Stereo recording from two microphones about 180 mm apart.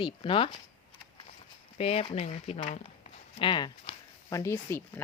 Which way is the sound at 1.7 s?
35° left (ahead or behind).